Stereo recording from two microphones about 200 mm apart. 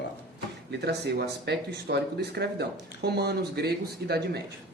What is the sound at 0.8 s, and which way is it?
Speech, 55° right (ahead or behind).